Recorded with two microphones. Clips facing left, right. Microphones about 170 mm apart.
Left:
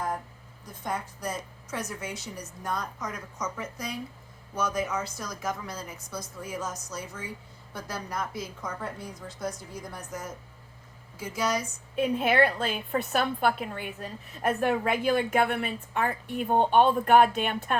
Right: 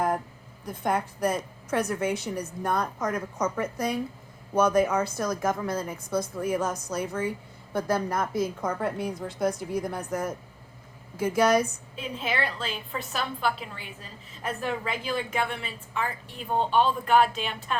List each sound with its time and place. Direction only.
0.6 s a woman's voice: 60° right (ahead or behind)
11.9 s a woman's voice: 55° left (ahead or behind)